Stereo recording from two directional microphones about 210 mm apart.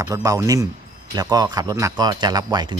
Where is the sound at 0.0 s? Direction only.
15° right (ahead or behind).